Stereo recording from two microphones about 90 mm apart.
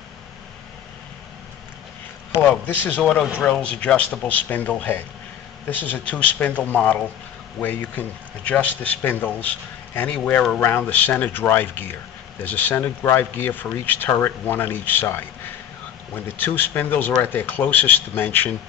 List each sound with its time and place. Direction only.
2.6 s speech: 20° left (ahead or behind)
10.9 s speech: 20° left (ahead or behind)